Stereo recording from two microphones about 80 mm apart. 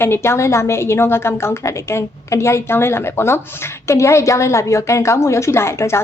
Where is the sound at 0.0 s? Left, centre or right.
Left.